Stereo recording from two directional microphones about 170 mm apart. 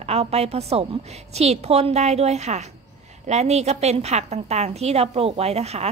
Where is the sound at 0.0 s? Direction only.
40° right (ahead or behind).